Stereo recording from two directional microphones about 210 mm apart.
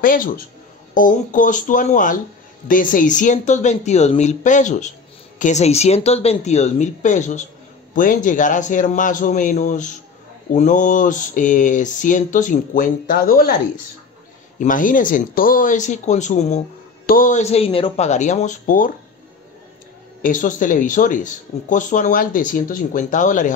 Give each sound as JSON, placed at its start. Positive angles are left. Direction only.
{"t": 0.0, "sound": "speech", "side_deg": 40}
{"t": 14.6, "sound": "speech", "side_deg": 40}
{"t": 20.2, "sound": "speech", "side_deg": 40}